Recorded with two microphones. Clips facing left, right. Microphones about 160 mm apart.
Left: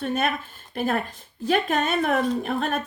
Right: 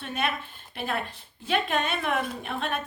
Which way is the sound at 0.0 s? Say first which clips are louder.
Left 5 dB; 45° left (ahead or behind).